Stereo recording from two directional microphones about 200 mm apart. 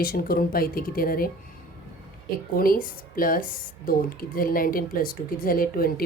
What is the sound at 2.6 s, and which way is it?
Speech, 45° left (ahead or behind).